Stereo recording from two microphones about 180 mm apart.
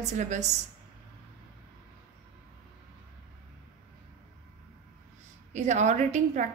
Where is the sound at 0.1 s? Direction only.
40° right (ahead or behind).